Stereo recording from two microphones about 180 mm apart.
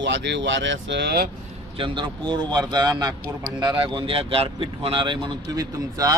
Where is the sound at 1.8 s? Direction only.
25° right (ahead or behind).